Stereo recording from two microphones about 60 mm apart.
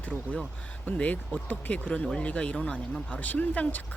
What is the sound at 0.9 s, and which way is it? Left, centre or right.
Speech, left.